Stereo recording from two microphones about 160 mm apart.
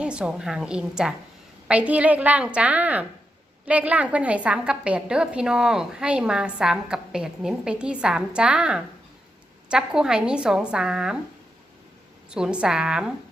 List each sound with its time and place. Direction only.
0.0 s a woman's voice: 5° right (ahead or behind)
12.3 s a woman's voice: 5° right (ahead or behind)